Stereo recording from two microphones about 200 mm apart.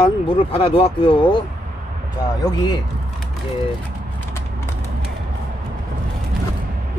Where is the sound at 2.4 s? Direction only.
20° left (ahead or behind).